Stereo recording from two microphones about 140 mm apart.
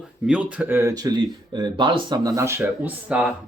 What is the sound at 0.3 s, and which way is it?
Speech, 10° right (ahead or behind).